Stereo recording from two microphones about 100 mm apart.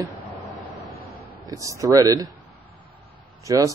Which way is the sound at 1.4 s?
35° right (ahead or behind).